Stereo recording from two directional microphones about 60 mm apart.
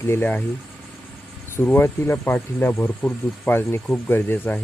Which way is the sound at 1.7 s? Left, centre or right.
Left.